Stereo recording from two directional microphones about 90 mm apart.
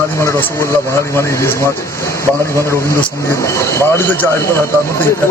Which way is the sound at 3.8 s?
25° left (ahead or behind).